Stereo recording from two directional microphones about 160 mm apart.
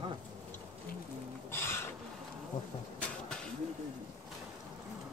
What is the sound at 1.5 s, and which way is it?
Music, 15° left (ahead or behind).